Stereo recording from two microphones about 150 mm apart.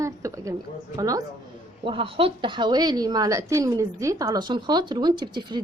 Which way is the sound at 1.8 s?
35° right (ahead or behind).